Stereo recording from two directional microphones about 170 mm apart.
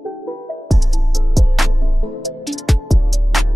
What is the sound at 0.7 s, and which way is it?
Music, centre (ahead or behind).